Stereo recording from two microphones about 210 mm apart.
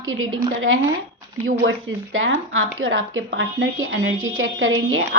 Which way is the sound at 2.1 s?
70° right (ahead or behind).